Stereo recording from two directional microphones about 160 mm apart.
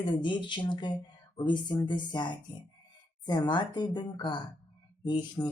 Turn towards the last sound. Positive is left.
turn(degrees=30)  # may be behind; listen again after turning